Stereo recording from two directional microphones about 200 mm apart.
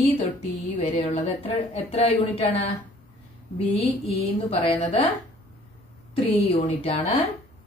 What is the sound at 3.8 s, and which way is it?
A woman's voice, 30° left (ahead or behind).